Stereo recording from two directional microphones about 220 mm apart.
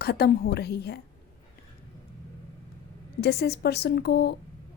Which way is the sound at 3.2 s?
50° left (ahead or behind).